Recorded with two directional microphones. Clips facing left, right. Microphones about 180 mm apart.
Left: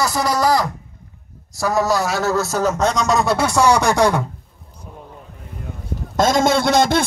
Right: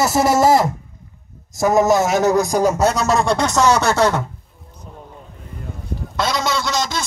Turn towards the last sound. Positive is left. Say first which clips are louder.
# left 7 dB
turn(degrees=55)  # may be behind; listen again after turning